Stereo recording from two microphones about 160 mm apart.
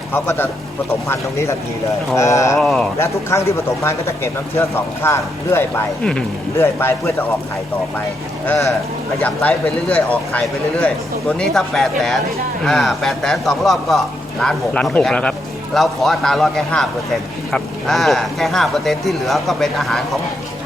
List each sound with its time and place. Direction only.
0.1 s speech: 10° left (ahead or behind)
2.6 s speech: centre (ahead or behind)
3.0 s speech: 20° left (ahead or behind)
9.2 s speech: 10° left (ahead or behind)